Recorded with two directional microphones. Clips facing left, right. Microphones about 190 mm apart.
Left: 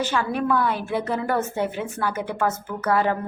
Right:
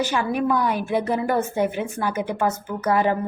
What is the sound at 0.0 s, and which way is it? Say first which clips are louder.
A woman's voice: right 2 dB; 15° right (ahead or behind).